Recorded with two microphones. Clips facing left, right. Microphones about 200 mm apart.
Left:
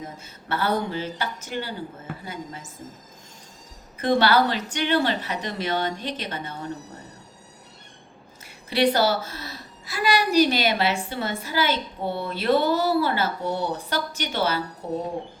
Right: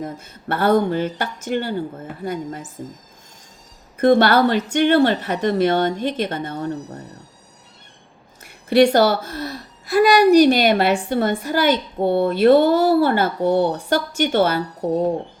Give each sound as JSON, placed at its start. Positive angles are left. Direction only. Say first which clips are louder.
{"t": 0.0, "sound": "speech", "louder": "right 8 dB", "side_deg": -55}
{"t": 3.9, "sound": "a woman's voice", "louder": "right 6 dB", "side_deg": -50}
{"t": 8.4, "sound": "a woman's voice", "louder": "right 8 dB", "side_deg": -50}